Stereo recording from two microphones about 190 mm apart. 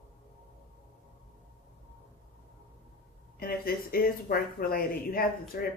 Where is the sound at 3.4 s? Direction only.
50° left (ahead or behind).